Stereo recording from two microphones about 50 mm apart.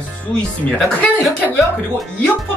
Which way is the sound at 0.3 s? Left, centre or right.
Centre.